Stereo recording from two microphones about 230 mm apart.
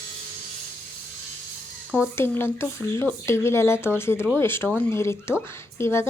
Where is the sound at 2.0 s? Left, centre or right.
Centre.